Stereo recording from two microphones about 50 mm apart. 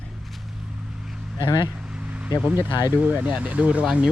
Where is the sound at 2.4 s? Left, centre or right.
Right.